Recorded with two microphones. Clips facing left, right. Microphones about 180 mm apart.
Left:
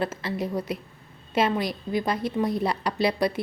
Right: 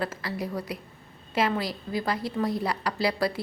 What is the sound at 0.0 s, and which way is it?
A woman's voice, 25° left (ahead or behind).